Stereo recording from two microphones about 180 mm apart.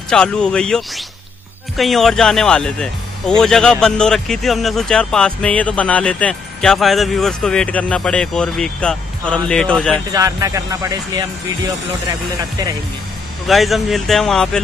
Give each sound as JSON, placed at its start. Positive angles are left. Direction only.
{"t": 0.1, "sound": "speech", "side_deg": 5}
{"t": 10.1, "sound": "speech", "side_deg": -20}
{"t": 13.5, "sound": "speech", "side_deg": 0}